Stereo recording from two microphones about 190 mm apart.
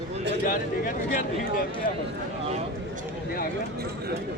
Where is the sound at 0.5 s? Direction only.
45° left (ahead or behind).